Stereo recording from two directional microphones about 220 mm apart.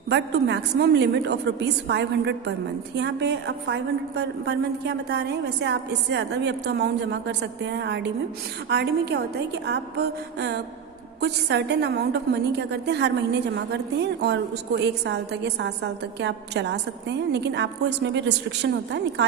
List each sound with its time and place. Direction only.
0.1 s a woman's voice: 50° right (ahead or behind)